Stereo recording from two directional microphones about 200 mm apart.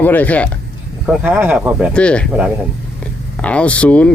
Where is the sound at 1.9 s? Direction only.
5° left (ahead or behind).